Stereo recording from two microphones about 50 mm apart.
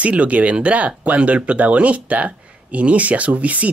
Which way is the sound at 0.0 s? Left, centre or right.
Right.